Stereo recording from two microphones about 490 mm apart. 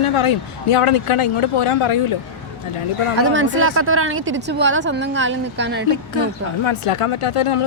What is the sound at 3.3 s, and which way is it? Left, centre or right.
Speech, right.